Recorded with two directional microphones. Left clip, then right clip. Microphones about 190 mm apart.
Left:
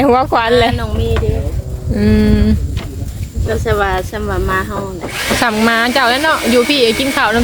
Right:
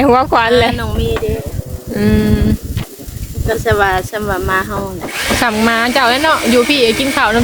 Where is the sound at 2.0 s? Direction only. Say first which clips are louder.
Left 1 dB; centre (ahead or behind).